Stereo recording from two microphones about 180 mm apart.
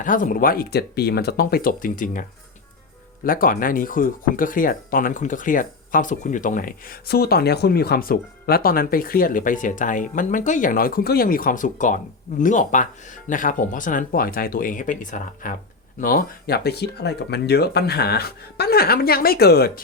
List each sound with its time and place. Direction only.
0.0 s speech: 50° left (ahead or behind)
3.2 s speech: 50° left (ahead or behind)